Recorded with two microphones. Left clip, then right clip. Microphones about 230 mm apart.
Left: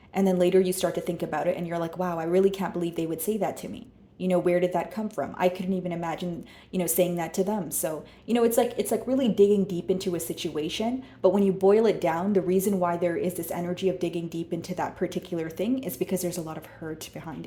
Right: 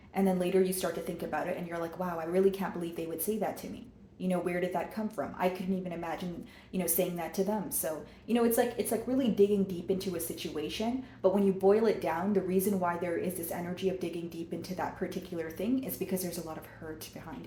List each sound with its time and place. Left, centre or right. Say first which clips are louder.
0.1 s a woman's voice: left 7 dB; left
14.8 s a woman's voice: left 6 dB; left